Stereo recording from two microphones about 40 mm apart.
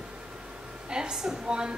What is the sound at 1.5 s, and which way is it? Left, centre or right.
Speech, right.